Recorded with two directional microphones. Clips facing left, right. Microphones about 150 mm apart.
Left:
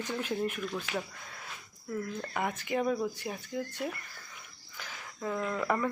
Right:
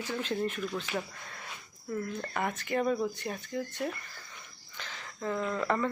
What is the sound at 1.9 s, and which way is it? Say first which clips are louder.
Speech: right 1 dB; centre (ahead or behind).